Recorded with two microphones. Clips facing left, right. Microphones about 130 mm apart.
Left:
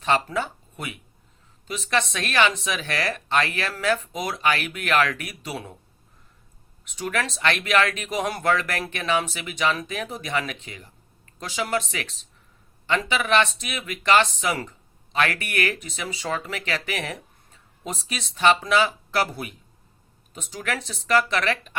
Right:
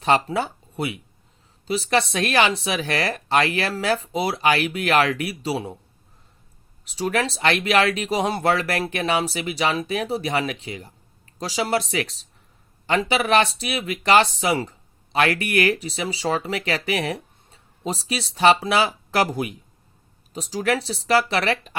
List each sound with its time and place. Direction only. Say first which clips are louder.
0.0 s speech: right 3 dB; 35° right (ahead or behind)
6.8 s speech: right 4 dB; 35° right (ahead or behind)